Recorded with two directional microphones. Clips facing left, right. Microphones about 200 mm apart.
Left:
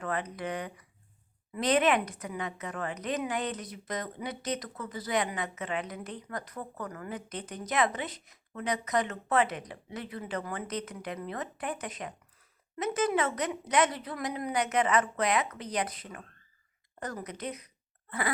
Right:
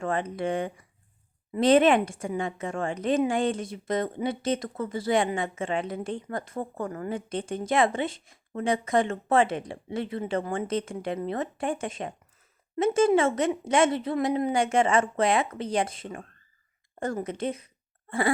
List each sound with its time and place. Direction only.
0.0 s a woman's voice: 25° right (ahead or behind)